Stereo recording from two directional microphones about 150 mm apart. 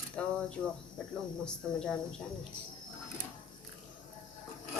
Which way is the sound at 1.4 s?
5° left (ahead or behind).